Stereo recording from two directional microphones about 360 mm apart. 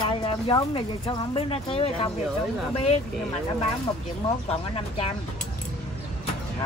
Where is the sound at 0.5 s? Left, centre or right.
Centre.